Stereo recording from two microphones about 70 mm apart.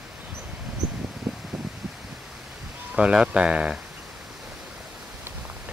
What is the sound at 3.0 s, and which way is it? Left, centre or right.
Speech, centre.